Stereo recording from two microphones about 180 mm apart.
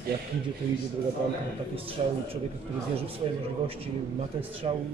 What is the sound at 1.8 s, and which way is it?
Speech, 30° right (ahead or behind).